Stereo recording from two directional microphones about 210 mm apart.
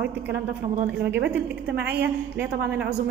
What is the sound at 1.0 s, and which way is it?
A woman's voice, 55° right (ahead or behind).